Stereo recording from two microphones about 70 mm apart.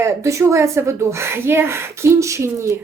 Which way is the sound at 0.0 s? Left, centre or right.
Right.